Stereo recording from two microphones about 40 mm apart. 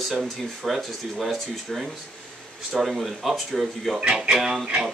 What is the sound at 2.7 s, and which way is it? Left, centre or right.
Speech, centre.